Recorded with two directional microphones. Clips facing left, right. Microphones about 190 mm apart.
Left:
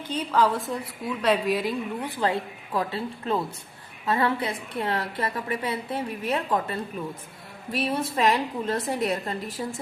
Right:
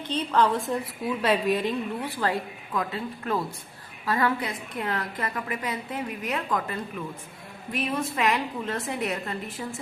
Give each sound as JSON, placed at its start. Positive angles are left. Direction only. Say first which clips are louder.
{"t": 0.1, "sound": "a woman's voice", "louder": "even", "side_deg": 5}
{"t": 2.0, "sound": "a woman's voice", "louder": "left 1 dB", "side_deg": 20}